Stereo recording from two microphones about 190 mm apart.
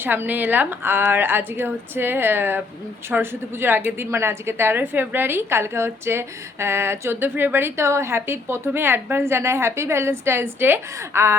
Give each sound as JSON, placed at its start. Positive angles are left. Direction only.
{"t": 0.0, "sound": "a woman's voice", "side_deg": -10}